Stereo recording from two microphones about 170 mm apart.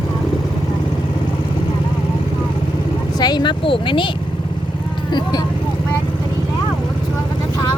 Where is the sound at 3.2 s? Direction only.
25° left (ahead or behind).